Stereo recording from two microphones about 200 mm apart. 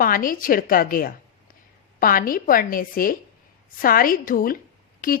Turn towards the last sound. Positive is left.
turn(degrees=45)  # may be behind; listen again after turning